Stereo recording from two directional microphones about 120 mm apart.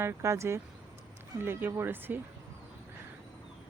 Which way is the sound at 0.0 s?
20° right (ahead or behind).